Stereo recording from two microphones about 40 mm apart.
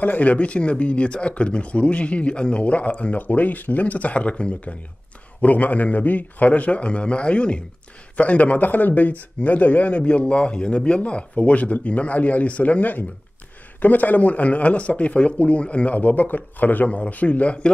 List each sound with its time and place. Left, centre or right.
0.0 s speech: left